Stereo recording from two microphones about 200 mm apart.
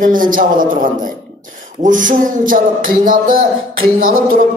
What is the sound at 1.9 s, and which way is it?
A man's voice, 40° right (ahead or behind).